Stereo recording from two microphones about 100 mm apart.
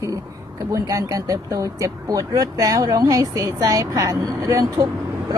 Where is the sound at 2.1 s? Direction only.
35° right (ahead or behind).